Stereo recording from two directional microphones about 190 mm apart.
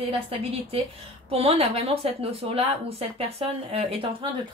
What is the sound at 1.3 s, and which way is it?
Speech, 30° right (ahead or behind).